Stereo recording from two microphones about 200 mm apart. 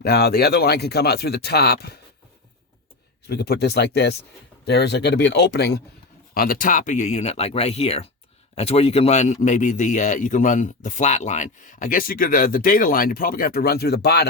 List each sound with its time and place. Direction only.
0.0 s speech: 50° left (ahead or behind)
3.2 s a man's voice: 50° left (ahead or behind)